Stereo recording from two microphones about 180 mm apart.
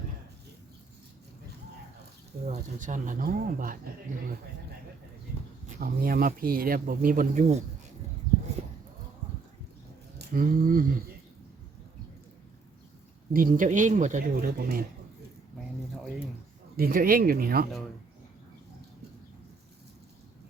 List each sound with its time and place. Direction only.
2.5 s speech: 45° right (ahead or behind)
5.6 s speech: 50° right (ahead or behind)
10.2 s speech: 55° right (ahead or behind)
13.3 s speech: 50° right (ahead or behind)
16.7 s speech: 55° right (ahead or behind)